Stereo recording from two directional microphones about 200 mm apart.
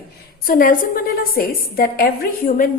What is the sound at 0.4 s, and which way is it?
A woman's voice, 45° left (ahead or behind).